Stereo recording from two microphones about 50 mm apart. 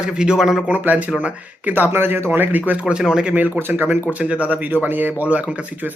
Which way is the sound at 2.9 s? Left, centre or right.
Centre.